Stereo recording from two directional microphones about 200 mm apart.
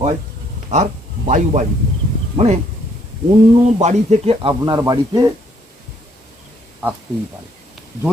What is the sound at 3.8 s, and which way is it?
Speech, 30° right (ahead or behind).